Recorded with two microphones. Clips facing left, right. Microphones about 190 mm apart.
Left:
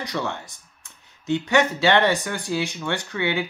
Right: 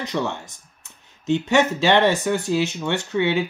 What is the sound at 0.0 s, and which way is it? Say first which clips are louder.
Speech: right 3 dB; 20° right (ahead or behind).